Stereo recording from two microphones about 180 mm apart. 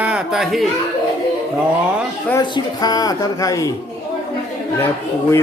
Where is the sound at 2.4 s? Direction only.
20° left (ahead or behind).